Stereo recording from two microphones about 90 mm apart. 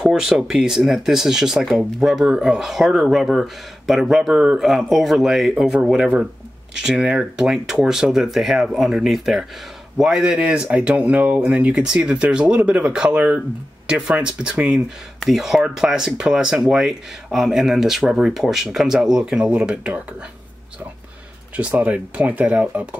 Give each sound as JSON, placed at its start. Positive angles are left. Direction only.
{"t": 0.0, "sound": "speech", "side_deg": -5}
{"t": 21.5, "sound": "speech", "side_deg": -15}